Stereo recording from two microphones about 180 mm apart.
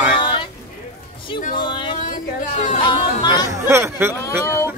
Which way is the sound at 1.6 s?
25° left (ahead or behind).